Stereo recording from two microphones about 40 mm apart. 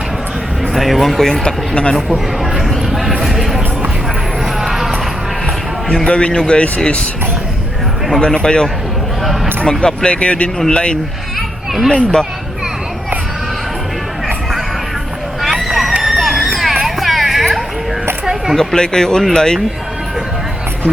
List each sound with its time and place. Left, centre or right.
0.7 s speech: centre; by 2.1 s left
2.6 s a sound: centre
3.2 s music: centre
4.6 s a sound: centre
6.1 s speech: left
8.2 s speech: left
9.6 s speech: left
11.3 s children playing: centre
11.9 s speech: left
15.4 s a sound: centre
16.8 s hubbub: centre
18.5 s chatter: centre
18.8 s speech: centre